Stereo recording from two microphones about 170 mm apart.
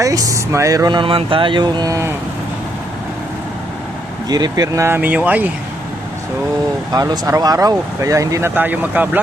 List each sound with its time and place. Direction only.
0.0 s speech: 20° right (ahead or behind)
4.3 s speech: 25° right (ahead or behind)
6.9 s speech: 20° right (ahead or behind)